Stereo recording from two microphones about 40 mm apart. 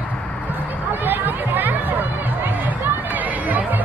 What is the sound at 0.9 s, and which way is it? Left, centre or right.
Speech, right.